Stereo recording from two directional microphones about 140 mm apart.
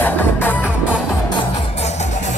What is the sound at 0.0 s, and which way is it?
Music, 15° left (ahead or behind).